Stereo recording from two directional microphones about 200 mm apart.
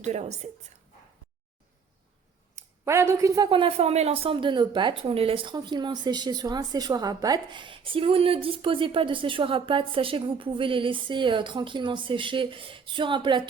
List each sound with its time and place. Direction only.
0.0 s a woman's voice: 35° right (ahead or behind)
2.6 s a woman's voice: 15° right (ahead or behind)